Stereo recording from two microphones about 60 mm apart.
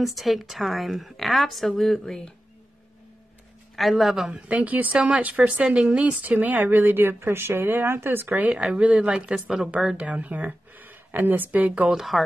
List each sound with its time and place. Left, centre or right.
0.0 s a woman's voice: centre
3.7 s a woman's voice: centre
4.5 s a woman's voice: right
8.5 s a woman's voice: centre
9.1 s speech: centre
10.0 s speech: right
11.9 s a woman's voice: centre